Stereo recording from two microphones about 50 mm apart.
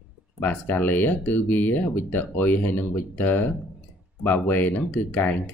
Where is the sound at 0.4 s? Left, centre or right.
Left.